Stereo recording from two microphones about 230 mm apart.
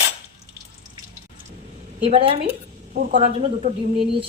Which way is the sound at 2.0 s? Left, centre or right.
Right.